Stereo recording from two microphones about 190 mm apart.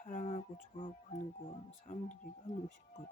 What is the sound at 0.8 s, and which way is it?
Speech, 30° left (ahead or behind).